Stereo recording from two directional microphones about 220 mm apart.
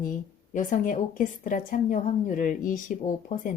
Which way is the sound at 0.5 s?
35° left (ahead or behind).